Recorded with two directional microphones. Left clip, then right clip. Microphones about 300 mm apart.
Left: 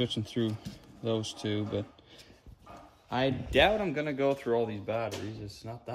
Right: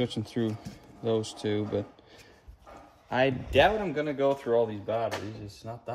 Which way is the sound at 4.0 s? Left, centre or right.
Centre.